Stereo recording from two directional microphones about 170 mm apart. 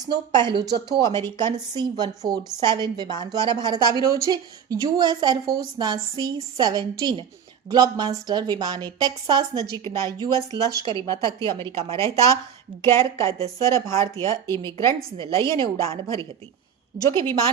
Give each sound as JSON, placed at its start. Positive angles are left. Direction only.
{"t": 0.0, "sound": "a woman's voice", "side_deg": -25}
{"t": 9.8, "sound": "speech", "side_deg": 20}
{"t": 10.8, "sound": "a woman's voice", "side_deg": -30}
{"t": 11.1, "sound": "a woman's voice", "side_deg": 20}
{"t": 11.3, "sound": "speech", "side_deg": -30}
{"t": 11.9, "sound": "a woman's voice", "side_deg": 20}